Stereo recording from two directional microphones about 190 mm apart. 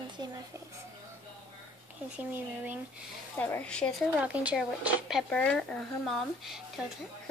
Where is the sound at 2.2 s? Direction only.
10° right (ahead or behind).